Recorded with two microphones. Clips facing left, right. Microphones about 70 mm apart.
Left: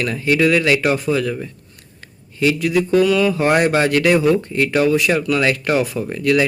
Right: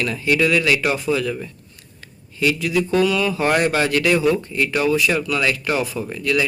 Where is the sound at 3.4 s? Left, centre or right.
Left.